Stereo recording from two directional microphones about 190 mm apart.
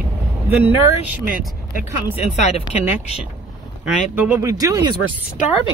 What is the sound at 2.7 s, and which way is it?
Speech, 10° right (ahead or behind).